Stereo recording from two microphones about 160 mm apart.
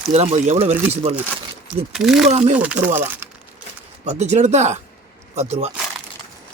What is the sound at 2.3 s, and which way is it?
Speech, 45° right (ahead or behind).